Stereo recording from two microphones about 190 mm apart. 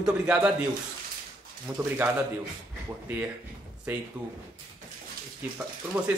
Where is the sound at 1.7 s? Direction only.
5° right (ahead or behind).